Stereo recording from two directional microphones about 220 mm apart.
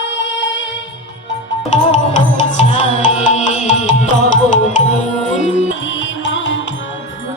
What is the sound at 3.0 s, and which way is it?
Music, 35° left (ahead or behind).